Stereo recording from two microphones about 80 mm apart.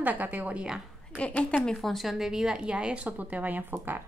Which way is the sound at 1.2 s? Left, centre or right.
Centre.